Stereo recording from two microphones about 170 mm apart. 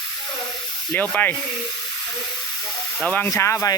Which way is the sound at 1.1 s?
10° left (ahead or behind).